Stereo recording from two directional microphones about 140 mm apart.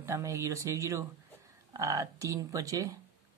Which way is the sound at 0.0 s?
20° right (ahead or behind).